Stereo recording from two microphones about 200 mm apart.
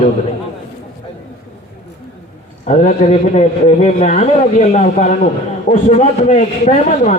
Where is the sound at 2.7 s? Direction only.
35° left (ahead or behind).